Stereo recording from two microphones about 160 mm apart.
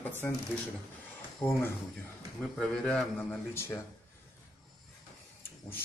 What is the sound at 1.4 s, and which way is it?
A man's voice, 10° left (ahead or behind).